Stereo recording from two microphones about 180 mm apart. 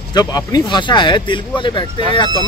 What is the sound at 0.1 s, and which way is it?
Speech, 20° left (ahead or behind).